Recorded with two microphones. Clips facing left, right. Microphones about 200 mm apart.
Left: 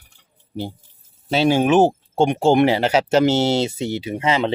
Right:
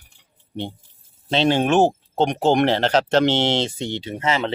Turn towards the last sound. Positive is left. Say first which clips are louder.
# left 3 dB
turn(degrees=15)  # may be behind; listen again after turning